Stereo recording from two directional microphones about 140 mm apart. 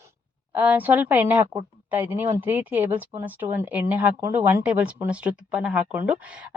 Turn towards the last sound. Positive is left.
turn(degrees=-10)  # may be behind; listen again after turning